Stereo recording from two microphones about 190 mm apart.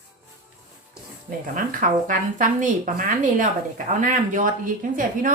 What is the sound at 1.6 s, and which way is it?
A woman's voice, 45° right (ahead or behind).